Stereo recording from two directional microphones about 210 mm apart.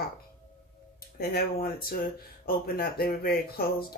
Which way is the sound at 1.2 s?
45° left (ahead or behind).